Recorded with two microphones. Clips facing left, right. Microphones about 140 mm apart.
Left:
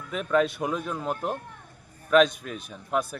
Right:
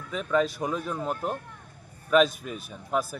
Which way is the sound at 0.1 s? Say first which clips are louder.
Left 1 dB; 5° left (ahead or behind).